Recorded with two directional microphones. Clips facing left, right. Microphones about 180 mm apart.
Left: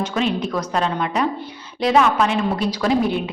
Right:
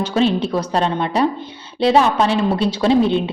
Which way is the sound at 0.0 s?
30° right (ahead or behind).